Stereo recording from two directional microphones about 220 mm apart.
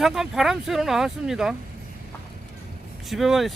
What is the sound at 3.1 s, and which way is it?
Speech, centre (ahead or behind).